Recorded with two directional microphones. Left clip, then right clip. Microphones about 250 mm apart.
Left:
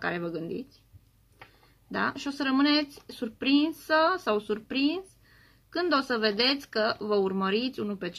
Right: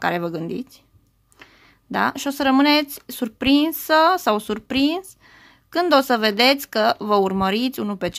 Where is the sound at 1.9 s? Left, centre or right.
Right.